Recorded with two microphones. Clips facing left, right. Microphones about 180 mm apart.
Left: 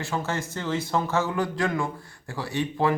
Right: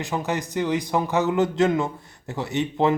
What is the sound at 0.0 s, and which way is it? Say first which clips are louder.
A man's voice: right 3 dB; 15° right (ahead or behind).